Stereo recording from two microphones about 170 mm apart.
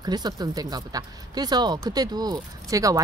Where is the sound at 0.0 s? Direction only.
25° right (ahead or behind).